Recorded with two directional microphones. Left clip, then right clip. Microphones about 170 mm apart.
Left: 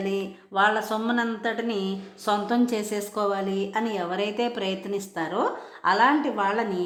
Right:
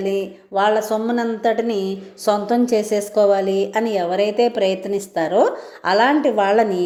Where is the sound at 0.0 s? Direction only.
5° right (ahead or behind).